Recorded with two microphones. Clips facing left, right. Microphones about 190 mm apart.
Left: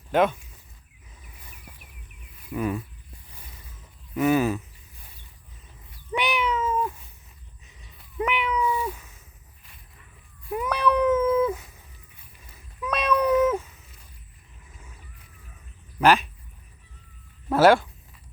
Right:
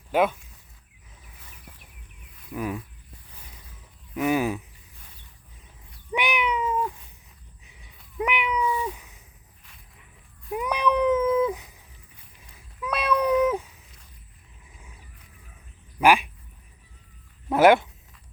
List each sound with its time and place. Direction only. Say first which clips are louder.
0.1 s speech: left 1 dB; 10° right (ahead or behind)
2.5 s speech: left 3 dB; 5° right (ahead or behind)
4.1 s speech: left 2 dB; 10° right (ahead or behind)
6.1 s meow: even; 15° right (ahead or behind)
7.6 s cat: left 2 dB; 10° right (ahead or behind)
10.5 s cat: left 1 dB; 15° right (ahead or behind)
11.4 s dog: left 1 dB; 15° right (ahead or behind)
12.8 s cat: left 1 dB; 10° right (ahead or behind)
16.0 s a sound: even; 10° right (ahead or behind)
17.5 s a sound: even; 20° right (ahead or behind)